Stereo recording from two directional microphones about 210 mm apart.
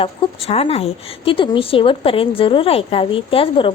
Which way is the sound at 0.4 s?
30° left (ahead or behind).